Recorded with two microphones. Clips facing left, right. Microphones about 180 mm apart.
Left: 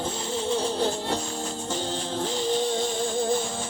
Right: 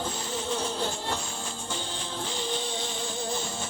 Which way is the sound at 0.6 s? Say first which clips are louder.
Left 5 dB; 35° left (ahead or behind).